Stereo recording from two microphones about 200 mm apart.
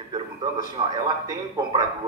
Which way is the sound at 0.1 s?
20° right (ahead or behind).